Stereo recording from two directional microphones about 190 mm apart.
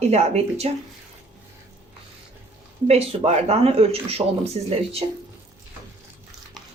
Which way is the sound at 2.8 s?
30° right (ahead or behind).